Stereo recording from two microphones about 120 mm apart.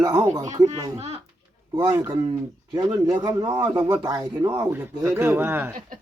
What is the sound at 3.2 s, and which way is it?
Speech, 35° right (ahead or behind).